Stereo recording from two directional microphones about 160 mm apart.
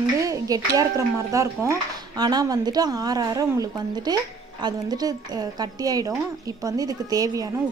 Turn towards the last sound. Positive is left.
turn(degrees=-25)  # may be behind; listen again after turning